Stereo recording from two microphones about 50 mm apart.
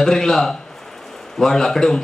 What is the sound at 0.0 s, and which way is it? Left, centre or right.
A man's voice, centre.